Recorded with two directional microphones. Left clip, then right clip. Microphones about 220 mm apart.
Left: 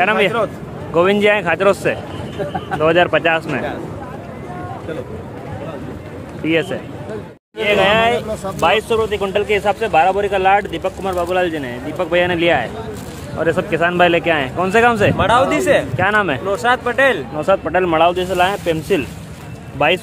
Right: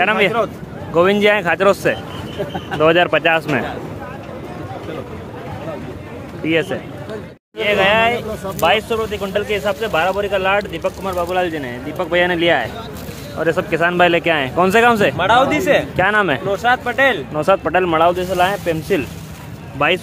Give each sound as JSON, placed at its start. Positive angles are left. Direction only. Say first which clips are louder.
{"t": 0.0, "sound": "a man's voice", "louder": "even", "side_deg": 0}
{"t": 6.4, "sound": "a man's voice", "louder": "even", "side_deg": 0}
{"t": 15.1, "sound": "speech", "louder": "even", "side_deg": 0}
{"t": 16.0, "sound": "a man's voice", "louder": "right 1 dB", "side_deg": -15}
{"t": 16.4, "sound": "speech", "louder": "even", "side_deg": 5}
{"t": 17.4, "sound": "a man's voice", "louder": "right 3 dB", "side_deg": -15}
{"t": 17.7, "sound": "speech", "louder": "even", "side_deg": 5}